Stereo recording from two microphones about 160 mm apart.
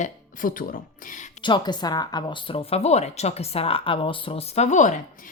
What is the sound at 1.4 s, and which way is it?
Speech, 30° left (ahead or behind).